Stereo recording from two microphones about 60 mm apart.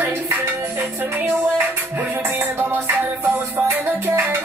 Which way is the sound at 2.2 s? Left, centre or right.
Right.